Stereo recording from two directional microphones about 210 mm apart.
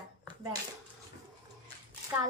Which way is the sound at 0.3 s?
20° right (ahead or behind).